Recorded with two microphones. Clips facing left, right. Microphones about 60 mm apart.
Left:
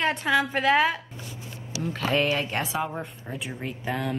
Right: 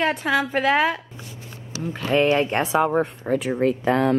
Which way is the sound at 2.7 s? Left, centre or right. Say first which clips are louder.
Right 10 dB; right.